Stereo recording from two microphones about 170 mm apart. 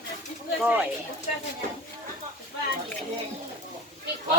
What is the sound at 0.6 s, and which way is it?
Speech, 5° right (ahead or behind).